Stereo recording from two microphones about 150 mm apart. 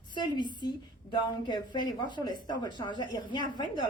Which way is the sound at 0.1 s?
30° left (ahead or behind).